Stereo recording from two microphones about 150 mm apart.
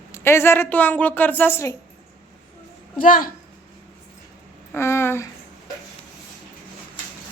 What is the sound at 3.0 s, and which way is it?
Speech, 65° left (ahead or behind).